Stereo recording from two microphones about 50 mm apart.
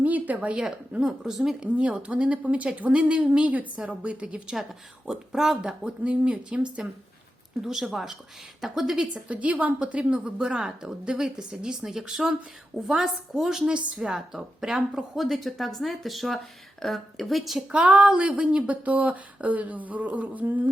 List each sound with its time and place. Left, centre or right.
0.0 s speech: right
0.5 s speech: centre
1.6 s a woman's voice: right
5.0 s speech: centre
7.6 s speech: centre
9.3 s a woman's voice: right; by 14.8 s centre
14.9 s speech: centre
17.7 s a woman's voice: right
18.9 s speech: right